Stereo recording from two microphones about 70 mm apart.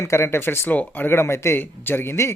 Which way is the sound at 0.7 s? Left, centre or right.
Left.